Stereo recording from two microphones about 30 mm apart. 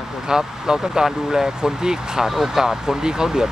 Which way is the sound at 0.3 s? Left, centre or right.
Right.